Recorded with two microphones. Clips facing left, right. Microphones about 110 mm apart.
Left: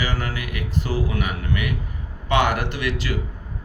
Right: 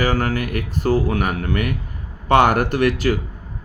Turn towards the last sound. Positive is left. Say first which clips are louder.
# right 8 dB
turn(degrees=-45)  # may be behind; listen again after turning